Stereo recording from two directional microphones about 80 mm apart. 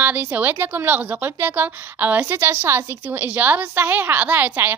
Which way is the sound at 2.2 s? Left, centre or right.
Right.